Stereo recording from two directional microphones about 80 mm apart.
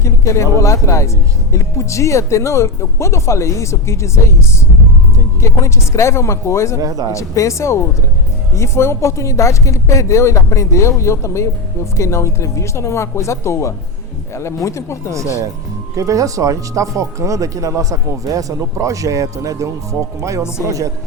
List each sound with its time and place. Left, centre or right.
0.0 s speech: left
5.4 s speech: left
6.8 s speech: right
7.1 s speech: left
16.0 s speech: right